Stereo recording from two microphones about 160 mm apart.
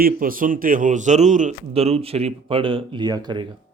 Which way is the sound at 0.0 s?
60° right (ahead or behind).